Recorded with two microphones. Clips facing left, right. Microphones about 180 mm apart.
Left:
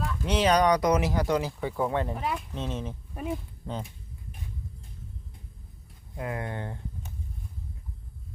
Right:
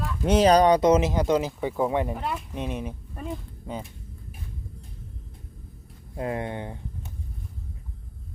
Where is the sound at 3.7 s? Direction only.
10° right (ahead or behind).